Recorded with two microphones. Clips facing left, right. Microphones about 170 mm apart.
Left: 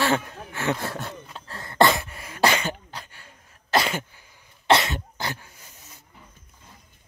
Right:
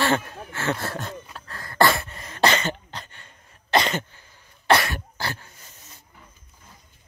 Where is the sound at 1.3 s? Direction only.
25° left (ahead or behind).